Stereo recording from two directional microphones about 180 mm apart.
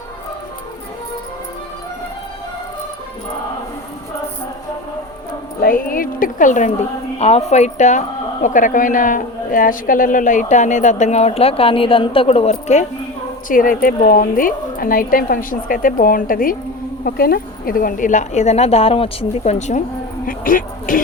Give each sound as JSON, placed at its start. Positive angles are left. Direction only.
{"t": 5.5, "sound": "speech", "side_deg": 50}
{"t": 13.5, "sound": "speech", "side_deg": 50}